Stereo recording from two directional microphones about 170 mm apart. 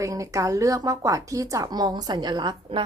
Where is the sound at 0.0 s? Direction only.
20° right (ahead or behind).